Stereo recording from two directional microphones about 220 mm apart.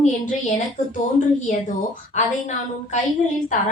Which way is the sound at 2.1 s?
35° left (ahead or behind).